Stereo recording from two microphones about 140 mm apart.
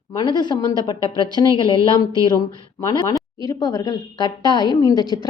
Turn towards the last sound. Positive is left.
turn(degrees=30)  # may be behind; listen again after turning